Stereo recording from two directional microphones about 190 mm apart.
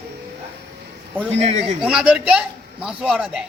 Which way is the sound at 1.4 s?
35° right (ahead or behind).